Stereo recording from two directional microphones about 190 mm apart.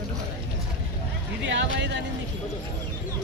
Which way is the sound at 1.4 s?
70° right (ahead or behind).